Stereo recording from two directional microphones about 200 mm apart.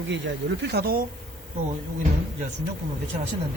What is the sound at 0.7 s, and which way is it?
Speech, 50° right (ahead or behind).